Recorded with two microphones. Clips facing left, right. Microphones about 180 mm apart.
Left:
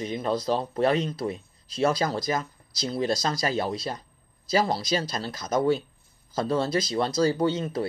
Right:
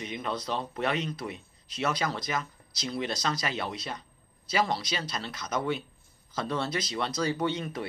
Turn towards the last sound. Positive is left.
turn(degrees=30)  # may be behind; listen again after turning